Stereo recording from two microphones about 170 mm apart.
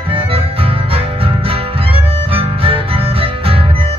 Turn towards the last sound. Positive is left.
turn(degrees=-30)  # may be behind; listen again after turning